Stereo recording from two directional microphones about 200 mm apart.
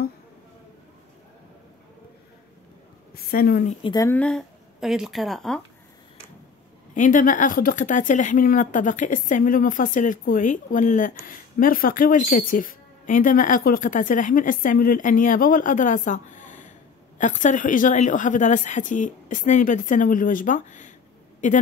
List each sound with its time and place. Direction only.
3.3 s speech: 50° left (ahead or behind)
3.9 s speech: 15° left (ahead or behind)
7.0 s speech: 40° left (ahead or behind)